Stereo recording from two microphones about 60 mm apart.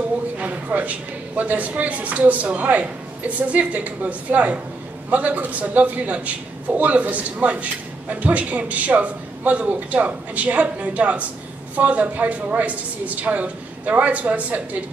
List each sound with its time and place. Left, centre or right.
0.4 s a man's voice: right